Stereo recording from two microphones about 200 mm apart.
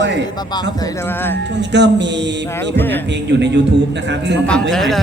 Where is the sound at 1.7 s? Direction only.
60° right (ahead or behind).